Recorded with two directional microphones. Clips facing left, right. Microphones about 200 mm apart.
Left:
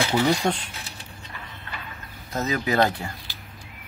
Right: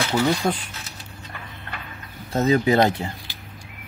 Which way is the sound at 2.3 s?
30° right (ahead or behind).